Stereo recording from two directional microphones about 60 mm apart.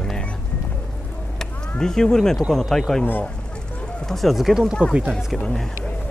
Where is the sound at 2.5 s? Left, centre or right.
Centre.